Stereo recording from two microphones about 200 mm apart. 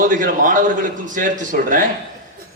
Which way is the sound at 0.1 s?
40° right (ahead or behind).